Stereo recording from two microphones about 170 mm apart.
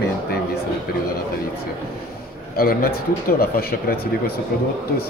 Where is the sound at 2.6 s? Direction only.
65° left (ahead or behind).